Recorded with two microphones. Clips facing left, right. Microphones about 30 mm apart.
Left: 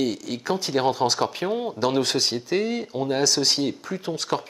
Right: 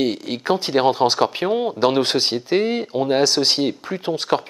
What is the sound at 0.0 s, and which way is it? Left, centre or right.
Speech, right.